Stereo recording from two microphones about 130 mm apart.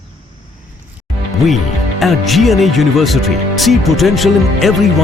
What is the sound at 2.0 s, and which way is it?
Speech, centre (ahead or behind).